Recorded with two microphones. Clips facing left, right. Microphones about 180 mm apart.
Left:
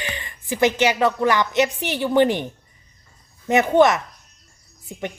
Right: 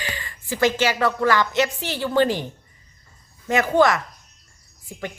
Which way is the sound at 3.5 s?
20° left (ahead or behind).